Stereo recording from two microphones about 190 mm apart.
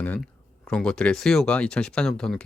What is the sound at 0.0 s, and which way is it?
Speech, 10° left (ahead or behind).